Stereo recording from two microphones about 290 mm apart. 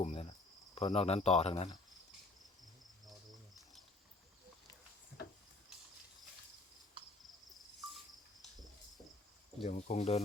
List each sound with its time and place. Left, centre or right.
0.0 s cricket: left
0.8 s speech: left
7.2 s cricket: centre
9.6 s speech: left